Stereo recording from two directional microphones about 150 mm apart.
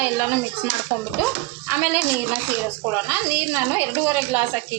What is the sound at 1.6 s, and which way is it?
A woman's voice, 15° right (ahead or behind).